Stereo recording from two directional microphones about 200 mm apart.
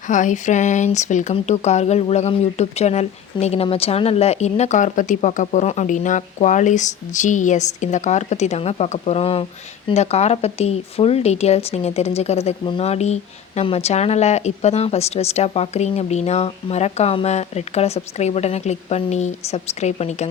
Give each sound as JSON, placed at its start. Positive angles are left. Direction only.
{"t": 0.1, "sound": "speech", "side_deg": 40}